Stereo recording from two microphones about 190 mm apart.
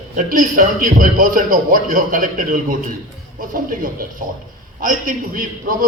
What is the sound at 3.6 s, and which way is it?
A man's voice, 50° right (ahead or behind).